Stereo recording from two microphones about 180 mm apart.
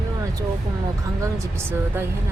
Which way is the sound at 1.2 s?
15° right (ahead or behind).